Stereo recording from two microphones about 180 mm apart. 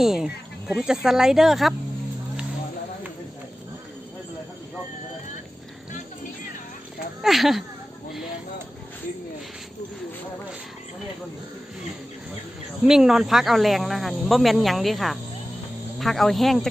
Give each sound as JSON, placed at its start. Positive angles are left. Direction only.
{"t": 0.0, "sound": "speech", "side_deg": 0}
{"t": 7.2, "sound": "speech", "side_deg": 0}
{"t": 12.8, "sound": "speech", "side_deg": -5}